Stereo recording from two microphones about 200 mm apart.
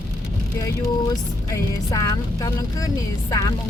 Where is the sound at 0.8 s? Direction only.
15° left (ahead or behind).